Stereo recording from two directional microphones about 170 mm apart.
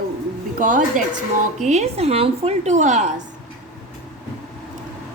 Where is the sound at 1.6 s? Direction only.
40° right (ahead or behind).